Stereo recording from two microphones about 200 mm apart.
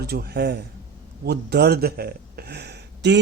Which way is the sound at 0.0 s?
50° right (ahead or behind).